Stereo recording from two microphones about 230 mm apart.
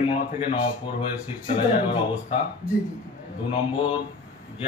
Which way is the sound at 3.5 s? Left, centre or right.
Left.